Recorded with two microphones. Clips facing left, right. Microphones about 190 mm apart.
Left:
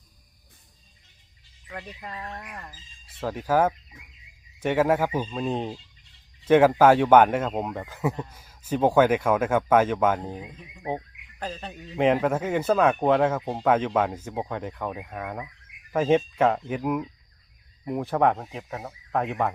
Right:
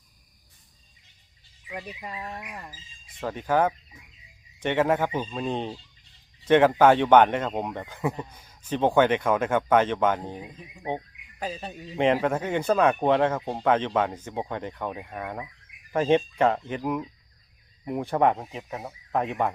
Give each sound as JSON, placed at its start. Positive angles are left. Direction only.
{"t": 1.6, "sound": "speech", "side_deg": -10}
{"t": 3.2, "sound": "speech", "side_deg": 5}
{"t": 10.4, "sound": "speech", "side_deg": -10}
{"t": 11.9, "sound": "speech", "side_deg": 5}